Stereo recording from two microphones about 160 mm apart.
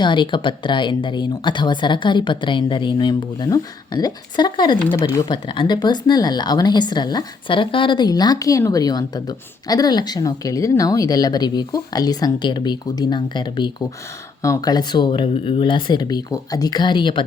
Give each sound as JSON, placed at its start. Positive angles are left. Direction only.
{"t": 0.0, "sound": "speech", "side_deg": 30}